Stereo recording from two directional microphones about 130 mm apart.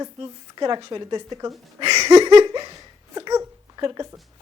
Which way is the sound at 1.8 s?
35° right (ahead or behind).